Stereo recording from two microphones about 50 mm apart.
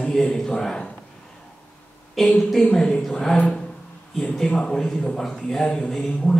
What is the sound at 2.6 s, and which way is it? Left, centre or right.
A man's voice, centre.